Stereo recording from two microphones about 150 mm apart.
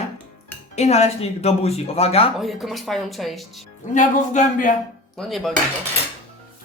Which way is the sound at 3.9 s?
55° left (ahead or behind).